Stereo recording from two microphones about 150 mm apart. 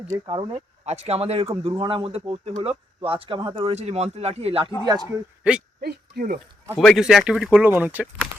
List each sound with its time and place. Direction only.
0.3 s speech: 30° right (ahead or behind)
0.9 s speech: 45° right (ahead or behind); by 3.6 s 30° right (ahead or behind)
3.6 s speech: 45° right (ahead or behind)
4.9 s a man's voice: 25° right (ahead or behind)
5.4 s speech: 5° right (ahead or behind)
5.8 s speech: 85° right
6.7 s speech: centre (ahead or behind)